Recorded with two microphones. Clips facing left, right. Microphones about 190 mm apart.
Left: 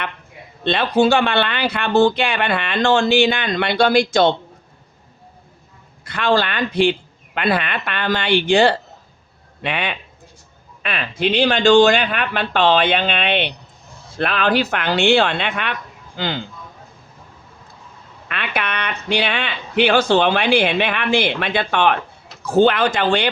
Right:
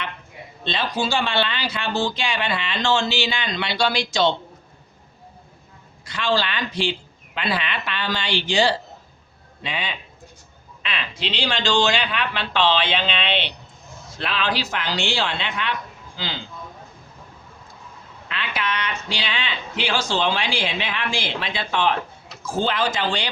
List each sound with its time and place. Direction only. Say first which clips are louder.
0.6 s speech: left 9 dB; 60° left (ahead or behind)
6.1 s speech: left 5 dB; 55° left (ahead or behind)
18.3 s speech: left 3 dB; 60° left (ahead or behind)